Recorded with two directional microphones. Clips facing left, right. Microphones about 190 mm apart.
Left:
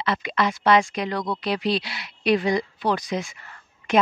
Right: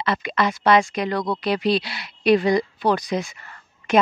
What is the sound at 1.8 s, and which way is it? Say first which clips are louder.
Speech: right 3 dB; 35° right (ahead or behind).